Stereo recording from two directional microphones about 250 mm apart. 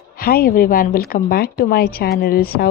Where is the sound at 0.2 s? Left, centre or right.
Left.